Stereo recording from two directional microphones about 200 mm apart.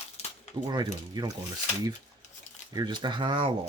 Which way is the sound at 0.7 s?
20° right (ahead or behind).